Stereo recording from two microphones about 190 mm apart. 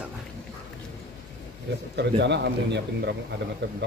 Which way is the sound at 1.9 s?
65° right (ahead or behind).